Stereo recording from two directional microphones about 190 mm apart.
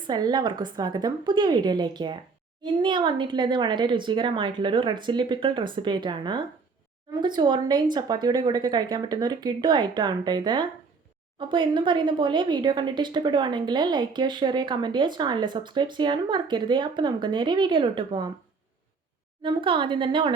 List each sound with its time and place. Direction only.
0.1 s speech: 20° right (ahead or behind)
19.4 s speech: 25° right (ahead or behind)